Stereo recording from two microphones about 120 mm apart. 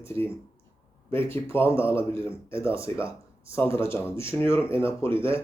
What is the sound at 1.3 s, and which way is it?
Speech, 20° left (ahead or behind).